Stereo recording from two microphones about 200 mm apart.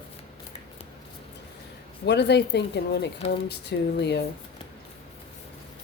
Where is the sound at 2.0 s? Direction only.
55° left (ahead or behind).